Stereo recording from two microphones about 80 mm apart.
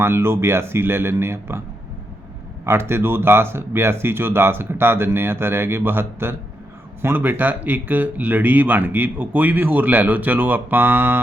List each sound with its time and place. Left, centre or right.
0.0 s speech: right
2.6 s speech: right